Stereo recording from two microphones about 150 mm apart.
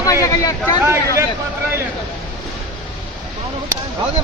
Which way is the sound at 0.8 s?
15° right (ahead or behind).